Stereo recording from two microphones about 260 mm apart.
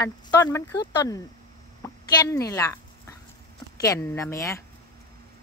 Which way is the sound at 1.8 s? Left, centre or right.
Centre.